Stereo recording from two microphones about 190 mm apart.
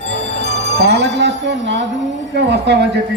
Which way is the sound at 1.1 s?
65° right (ahead or behind).